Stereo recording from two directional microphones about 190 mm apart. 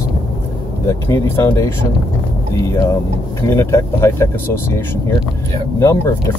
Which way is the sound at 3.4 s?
15° left (ahead or behind).